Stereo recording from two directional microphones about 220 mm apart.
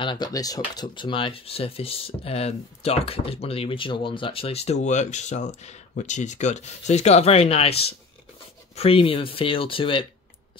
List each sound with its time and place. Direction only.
0.0 s speech: 20° left (ahead or behind)